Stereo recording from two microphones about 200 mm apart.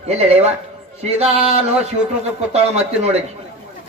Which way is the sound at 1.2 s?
30° right (ahead or behind).